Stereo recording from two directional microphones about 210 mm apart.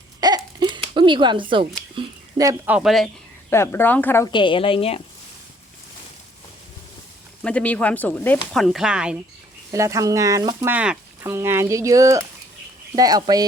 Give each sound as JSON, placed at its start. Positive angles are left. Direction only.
{"t": 0.2, "sound": "a sound", "side_deg": -20}
{"t": 2.0, "sound": "speech", "side_deg": -15}
{"t": 3.5, "sound": "speech", "side_deg": 10}
{"t": 4.3, "sound": "a woman's voice", "side_deg": 20}
{"t": 7.4, "sound": "speech", "side_deg": 5}
{"t": 9.7, "sound": "speech", "side_deg": -15}